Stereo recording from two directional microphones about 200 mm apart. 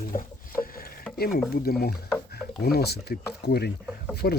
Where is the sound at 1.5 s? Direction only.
50° left (ahead or behind).